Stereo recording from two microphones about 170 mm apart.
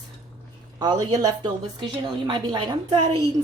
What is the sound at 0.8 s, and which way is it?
Speech, 25° right (ahead or behind).